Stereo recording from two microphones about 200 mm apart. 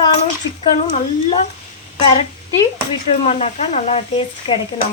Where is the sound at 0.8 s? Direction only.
35° left (ahead or behind).